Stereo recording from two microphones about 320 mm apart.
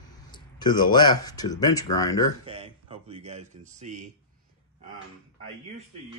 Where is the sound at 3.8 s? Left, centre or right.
Right.